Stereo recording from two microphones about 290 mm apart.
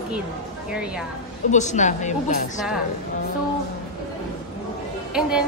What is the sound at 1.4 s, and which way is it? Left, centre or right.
A woman's voice, left.